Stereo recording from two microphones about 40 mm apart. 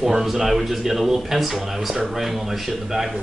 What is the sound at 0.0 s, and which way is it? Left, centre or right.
Speech, centre.